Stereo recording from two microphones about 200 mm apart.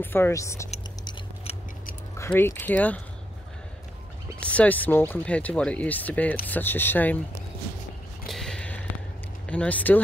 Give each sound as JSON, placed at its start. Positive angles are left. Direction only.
{"t": 0.0, "sound": "speech", "side_deg": 10}
{"t": 1.0, "sound": "tick-tock", "side_deg": 30}
{"t": 2.1, "sound": "speech", "side_deg": 10}
{"t": 4.4, "sound": "speech", "side_deg": 5}
{"t": 8.3, "sound": "a sound", "side_deg": 5}
{"t": 9.5, "sound": "speech", "side_deg": 5}